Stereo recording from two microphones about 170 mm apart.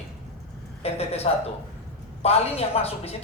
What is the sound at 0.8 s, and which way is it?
Speech, 35° left (ahead or behind).